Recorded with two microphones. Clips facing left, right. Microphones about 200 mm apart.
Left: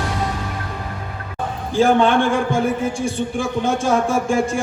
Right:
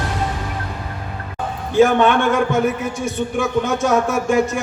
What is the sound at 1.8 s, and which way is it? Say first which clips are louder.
A man's voice: right 1 dB; 30° left (ahead or behind).